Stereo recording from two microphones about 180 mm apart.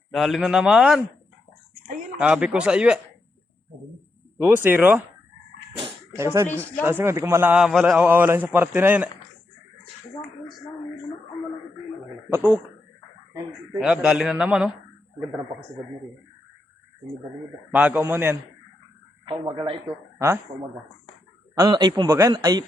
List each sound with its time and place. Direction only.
0.1 s a man's voice: centre (ahead or behind)
2.1 s a man's voice: 5° right (ahead or behind)
4.4 s a man's voice: 10° right (ahead or behind)
6.1 s a man's voice: 15° right (ahead or behind)
12.3 s a man's voice: 10° right (ahead or behind)
13.8 s a man's voice: 5° right (ahead or behind)
17.7 s a man's voice: 10° right (ahead or behind)
19.2 s a man's voice: 25° right (ahead or behind)
21.5 s speech: 20° right (ahead or behind)